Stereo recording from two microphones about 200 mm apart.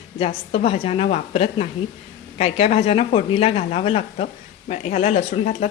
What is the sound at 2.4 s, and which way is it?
A woman's voice, 30° left (ahead or behind).